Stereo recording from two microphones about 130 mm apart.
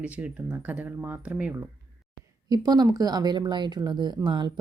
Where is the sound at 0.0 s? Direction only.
10° right (ahead or behind).